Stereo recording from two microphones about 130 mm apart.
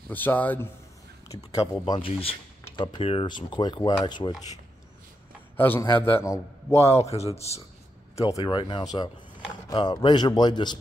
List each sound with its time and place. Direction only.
0.1 s a man's voice: 15° left (ahead or behind)
1.3 s a man's voice: 25° left (ahead or behind)
2.0 s speech: 45° left (ahead or behind)
5.6 s a man's voice: 15° left (ahead or behind)
6.9 s speech: 55° left (ahead or behind)
8.2 s a man's voice: 25° left (ahead or behind)
8.5 s speech: 35° left (ahead or behind)